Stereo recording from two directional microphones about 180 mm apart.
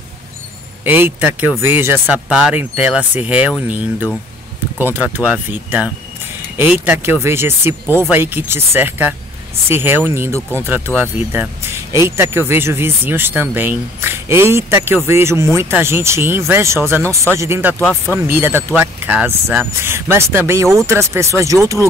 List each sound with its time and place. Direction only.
0.8 s speech: 10° right (ahead or behind)
17.7 s speech: 10° left (ahead or behind)
18.1 s speech: 10° right (ahead or behind)